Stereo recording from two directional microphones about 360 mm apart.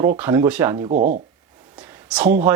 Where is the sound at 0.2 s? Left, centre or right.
Centre.